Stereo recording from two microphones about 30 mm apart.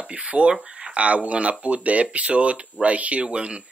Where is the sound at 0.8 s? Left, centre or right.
Right.